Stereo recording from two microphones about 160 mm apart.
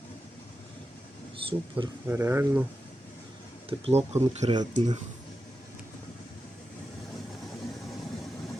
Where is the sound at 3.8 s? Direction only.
40° right (ahead or behind).